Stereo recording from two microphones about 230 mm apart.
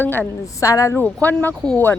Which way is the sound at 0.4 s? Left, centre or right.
Centre.